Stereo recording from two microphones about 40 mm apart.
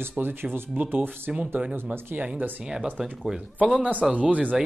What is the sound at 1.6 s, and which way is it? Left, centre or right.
Speech, right.